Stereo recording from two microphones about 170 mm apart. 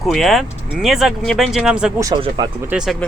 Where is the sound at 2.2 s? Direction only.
25° right (ahead or behind).